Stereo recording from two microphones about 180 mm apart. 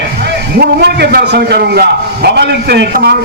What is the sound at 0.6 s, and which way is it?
A man's voice, 65° right (ahead or behind).